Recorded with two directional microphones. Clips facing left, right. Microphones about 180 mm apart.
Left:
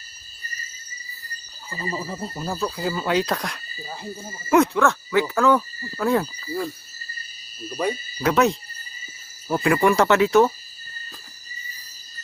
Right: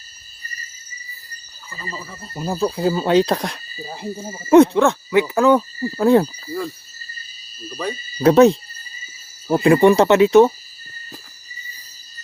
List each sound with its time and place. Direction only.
1.7 s speech: 20° left (ahead or behind)
2.3 s speech: 15° right (ahead or behind)
2.6 s speech: 30° right (ahead or behind)
3.8 s speech: 15° right (ahead or behind)
4.4 s speech: 30° right (ahead or behind)
7.7 s speech: 10° left (ahead or behind)
8.2 s speech: 30° right (ahead or behind)